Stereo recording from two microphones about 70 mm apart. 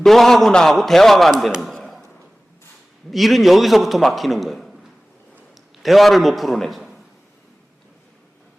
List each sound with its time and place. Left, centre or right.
0.0 s a man's voice: centre
1.7 s a sound: centre
3.1 s a man's voice: centre